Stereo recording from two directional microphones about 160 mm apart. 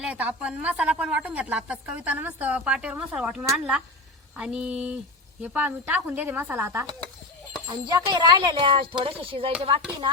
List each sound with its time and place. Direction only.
0.0 s a woman's voice: 10° right (ahead or behind)
7.7 s speech: 25° right (ahead or behind)